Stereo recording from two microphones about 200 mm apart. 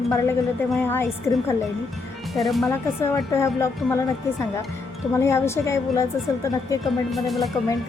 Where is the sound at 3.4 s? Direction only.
15° left (ahead or behind).